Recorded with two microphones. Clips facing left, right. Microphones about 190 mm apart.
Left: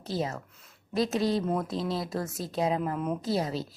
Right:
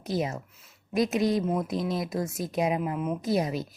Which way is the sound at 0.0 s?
15° right (ahead or behind).